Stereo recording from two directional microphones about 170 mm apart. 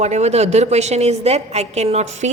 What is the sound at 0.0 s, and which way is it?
A woman's voice, 40° right (ahead or behind).